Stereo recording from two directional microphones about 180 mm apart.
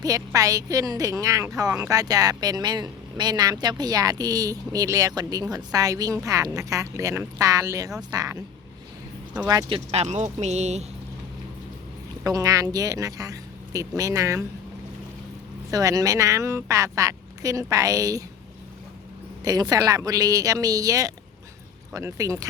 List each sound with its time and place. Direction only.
0.0 s a woman's voice: 20° right (ahead or behind)
9.5 s speech: 25° right (ahead or behind); by 10.8 s 40° right (ahead or behind)
12.2 s a woman's voice: 20° right (ahead or behind)
15.7 s speech: 20° right (ahead or behind)
19.5 s a woman's voice: 20° right (ahead or behind)